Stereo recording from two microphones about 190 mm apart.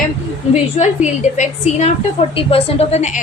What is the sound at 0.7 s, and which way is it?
A woman's voice, 40° left (ahead or behind).